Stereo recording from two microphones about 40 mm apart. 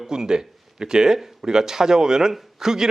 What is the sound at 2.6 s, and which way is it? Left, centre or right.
Speech, centre.